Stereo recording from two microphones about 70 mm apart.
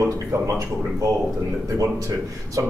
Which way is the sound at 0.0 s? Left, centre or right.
Right.